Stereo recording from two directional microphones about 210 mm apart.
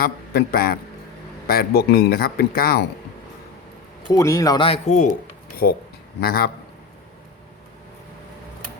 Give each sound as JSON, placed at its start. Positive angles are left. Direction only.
{"t": 0.0, "sound": "a man's voice", "side_deg": 45}
{"t": 4.1, "sound": "speech", "side_deg": 15}
{"t": 5.6, "sound": "speech", "side_deg": 45}